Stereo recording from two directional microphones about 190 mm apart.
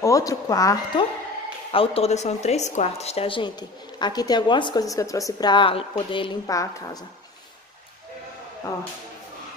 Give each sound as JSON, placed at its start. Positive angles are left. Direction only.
{"t": 0.0, "sound": "speech", "side_deg": 15}
{"t": 1.7, "sound": "a woman's voice", "side_deg": 30}